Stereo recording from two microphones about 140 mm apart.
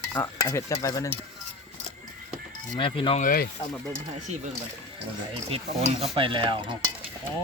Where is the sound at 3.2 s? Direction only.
90° left.